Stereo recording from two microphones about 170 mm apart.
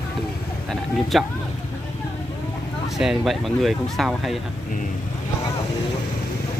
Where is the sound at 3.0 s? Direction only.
Centre (ahead or behind).